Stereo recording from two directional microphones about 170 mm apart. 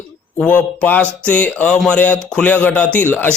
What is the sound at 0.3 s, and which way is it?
A man's voice, 5° left (ahead or behind).